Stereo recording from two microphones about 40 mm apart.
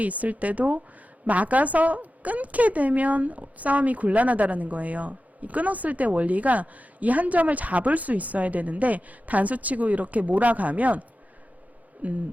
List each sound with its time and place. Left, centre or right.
0.0 s a woman's voice: right
12.0 s a woman's voice: right